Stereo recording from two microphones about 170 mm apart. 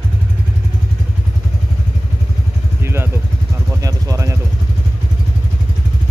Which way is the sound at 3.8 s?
20° right (ahead or behind).